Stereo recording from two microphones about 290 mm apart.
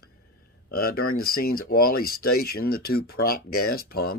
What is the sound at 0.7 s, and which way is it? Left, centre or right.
Speech, left.